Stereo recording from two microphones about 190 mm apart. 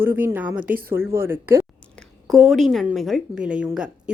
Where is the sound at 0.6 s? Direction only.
50° right (ahead or behind).